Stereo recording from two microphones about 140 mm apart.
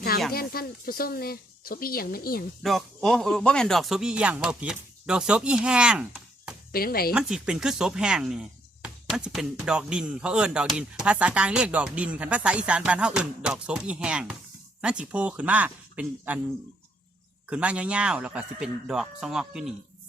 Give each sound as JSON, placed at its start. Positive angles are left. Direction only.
{"t": 0.3, "sound": "speech", "side_deg": 90}
{"t": 2.6, "sound": "speech", "side_deg": 0}
{"t": 6.7, "sound": "speech", "side_deg": 90}
{"t": 7.1, "sound": "speech", "side_deg": -5}
{"t": 17.5, "sound": "speech", "side_deg": -10}